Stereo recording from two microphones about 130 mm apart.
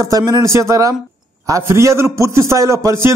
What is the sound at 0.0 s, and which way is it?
A man's voice, 25° right (ahead or behind).